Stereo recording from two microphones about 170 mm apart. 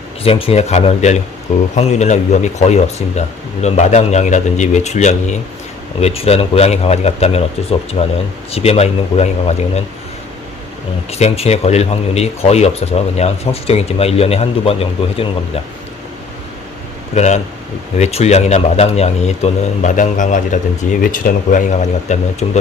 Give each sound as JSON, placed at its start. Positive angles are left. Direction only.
{"t": 0.2, "sound": "speech", "side_deg": 35}
{"t": 11.1, "sound": "speech", "side_deg": 40}
{"t": 17.2, "sound": "speech", "side_deg": 40}